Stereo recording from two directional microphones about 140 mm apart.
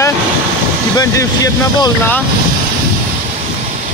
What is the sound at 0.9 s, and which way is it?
Speech, 25° left (ahead or behind).